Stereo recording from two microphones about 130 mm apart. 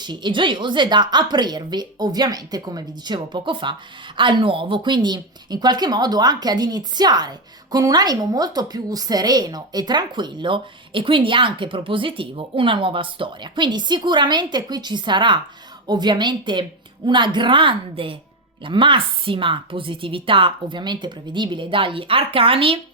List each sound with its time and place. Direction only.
0.0 s a woman's voice: 35° right (ahead or behind)